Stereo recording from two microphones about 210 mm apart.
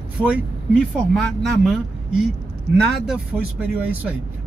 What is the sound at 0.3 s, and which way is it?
Speech, 5° right (ahead or behind).